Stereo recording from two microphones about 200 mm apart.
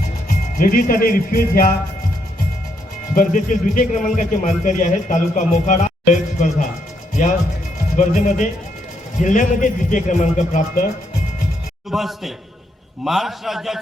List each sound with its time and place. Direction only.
0.3 s speech: 45° left (ahead or behind)
3.2 s a man's voice: 40° left (ahead or behind)
11.9 s a man's voice: centre (ahead or behind)